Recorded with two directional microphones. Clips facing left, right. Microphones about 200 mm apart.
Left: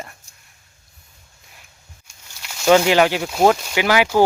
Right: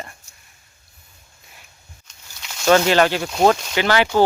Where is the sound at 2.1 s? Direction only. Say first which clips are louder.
Even; 5° left (ahead or behind).